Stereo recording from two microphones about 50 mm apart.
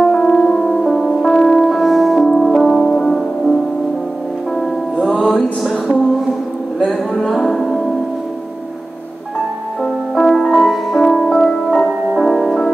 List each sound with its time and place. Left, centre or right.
0.0 s music: centre
5.0 s music: centre
10.1 s music: centre
12.2 s music: centre